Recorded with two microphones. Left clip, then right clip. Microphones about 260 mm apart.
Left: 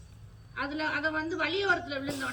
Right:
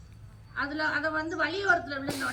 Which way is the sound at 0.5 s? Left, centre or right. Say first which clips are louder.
Right 2 dB; centre.